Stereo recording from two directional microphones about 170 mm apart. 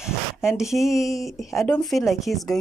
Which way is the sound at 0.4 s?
5° right (ahead or behind).